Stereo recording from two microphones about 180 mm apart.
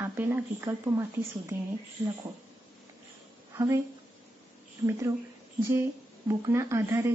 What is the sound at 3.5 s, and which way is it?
Speech, 15° right (ahead or behind).